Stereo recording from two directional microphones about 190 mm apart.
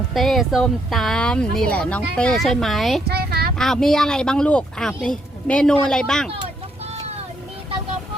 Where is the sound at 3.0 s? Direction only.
55° right (ahead or behind).